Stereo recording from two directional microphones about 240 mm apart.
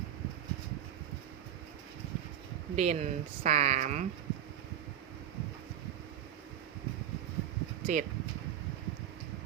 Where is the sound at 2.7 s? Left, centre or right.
Right.